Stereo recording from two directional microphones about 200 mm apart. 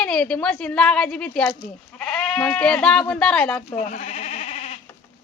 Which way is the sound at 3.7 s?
40° left (ahead or behind).